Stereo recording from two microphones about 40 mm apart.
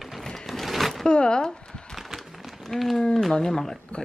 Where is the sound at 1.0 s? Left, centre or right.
Left.